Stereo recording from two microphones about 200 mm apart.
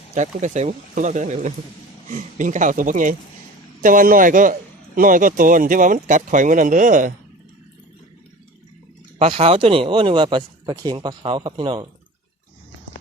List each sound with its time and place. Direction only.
0.1 s speech: 35° right (ahead or behind)
9.1 s speech: 30° right (ahead or behind)